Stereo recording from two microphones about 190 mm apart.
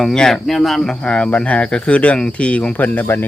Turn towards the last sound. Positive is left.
turn(degrees=10)  # may be behind; listen again after turning